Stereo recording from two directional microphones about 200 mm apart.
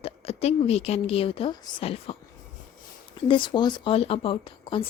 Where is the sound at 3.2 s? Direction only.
25° left (ahead or behind).